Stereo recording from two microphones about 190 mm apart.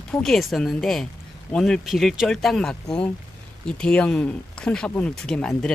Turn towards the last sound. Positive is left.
turn(degrees=5)  # may be behind; listen again after turning